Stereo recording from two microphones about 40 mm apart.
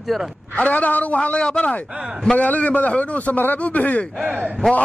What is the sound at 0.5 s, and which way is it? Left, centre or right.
Speech, left.